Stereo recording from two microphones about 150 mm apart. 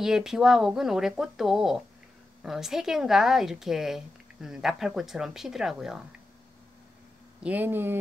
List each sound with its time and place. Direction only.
0.0 s speech: 5° right (ahead or behind)
7.4 s speech: 10° right (ahead or behind)